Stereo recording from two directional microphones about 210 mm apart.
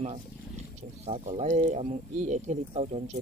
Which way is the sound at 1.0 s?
30° right (ahead or behind).